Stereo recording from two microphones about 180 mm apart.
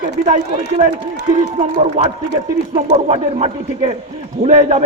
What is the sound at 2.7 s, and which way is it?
A man's voice, 35° right (ahead or behind).